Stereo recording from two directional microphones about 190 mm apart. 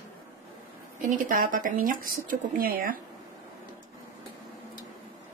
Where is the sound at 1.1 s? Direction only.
45° right (ahead or behind).